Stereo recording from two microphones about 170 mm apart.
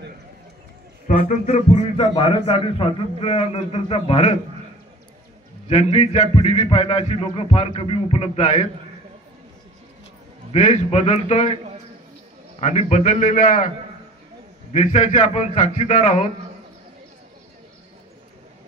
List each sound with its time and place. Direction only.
1.0 s a man's voice: 40° left (ahead or behind)
5.7 s a man's voice: 35° left (ahead or behind)
10.5 s a man's voice: 40° left (ahead or behind)
12.5 s a man's voice: 40° left (ahead or behind)
14.7 s a man's voice: 40° left (ahead or behind)